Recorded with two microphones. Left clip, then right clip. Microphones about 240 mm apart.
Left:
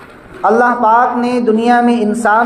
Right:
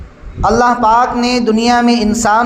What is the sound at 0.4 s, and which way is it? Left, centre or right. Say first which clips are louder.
Speech: even; right.